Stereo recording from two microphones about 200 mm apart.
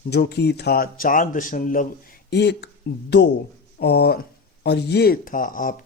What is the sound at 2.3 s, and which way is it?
Speech, 60° left (ahead or behind).